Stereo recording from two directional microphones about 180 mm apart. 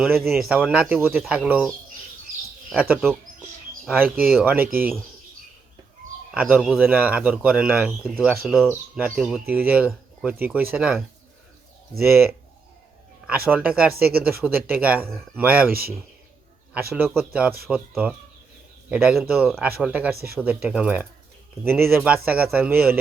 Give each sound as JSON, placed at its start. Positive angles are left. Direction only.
{"t": 0.0, "sound": "speech", "side_deg": 0}
{"t": 6.3, "sound": "speech", "side_deg": -5}
{"t": 13.2, "sound": "speech", "side_deg": -10}
{"t": 15.7, "sound": "a man's voice", "side_deg": -55}
{"t": 16.9, "sound": "speech", "side_deg": -10}